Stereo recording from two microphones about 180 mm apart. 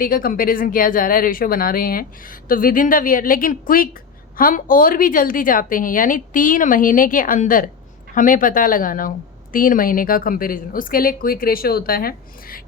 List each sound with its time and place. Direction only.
0.0 s a woman's voice: 55° left (ahead or behind)